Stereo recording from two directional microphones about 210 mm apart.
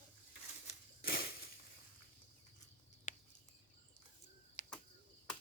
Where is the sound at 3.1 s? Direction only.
35° left (ahead or behind).